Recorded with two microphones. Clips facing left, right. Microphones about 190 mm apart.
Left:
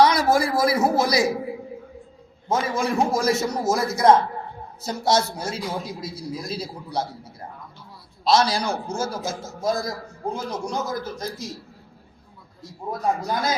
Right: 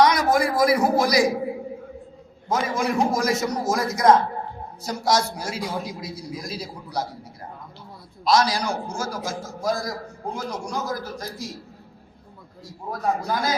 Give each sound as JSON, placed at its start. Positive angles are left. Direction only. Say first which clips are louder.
{"t": 0.0, "sound": "a man's voice", "louder": "left 1 dB", "side_deg": 30}
{"t": 2.5, "sound": "a man's voice", "louder": "even", "side_deg": 25}
{"t": 8.2, "sound": "a man's voice", "louder": "left 1 dB", "side_deg": 25}
{"t": 12.9, "sound": "a man's voice", "louder": "even", "side_deg": 20}